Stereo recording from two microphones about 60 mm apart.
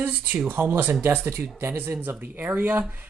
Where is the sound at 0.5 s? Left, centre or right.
Right.